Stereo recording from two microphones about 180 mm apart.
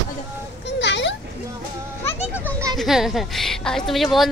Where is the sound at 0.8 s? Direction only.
85° left.